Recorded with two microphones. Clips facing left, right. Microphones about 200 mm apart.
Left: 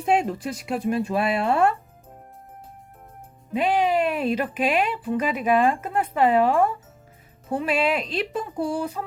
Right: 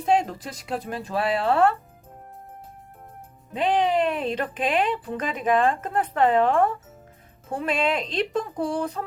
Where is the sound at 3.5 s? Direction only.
10° left (ahead or behind).